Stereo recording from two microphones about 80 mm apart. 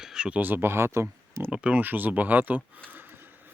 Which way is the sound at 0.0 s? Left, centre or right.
Centre.